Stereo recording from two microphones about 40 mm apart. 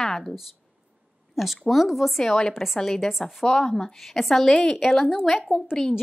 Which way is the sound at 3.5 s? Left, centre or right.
Centre.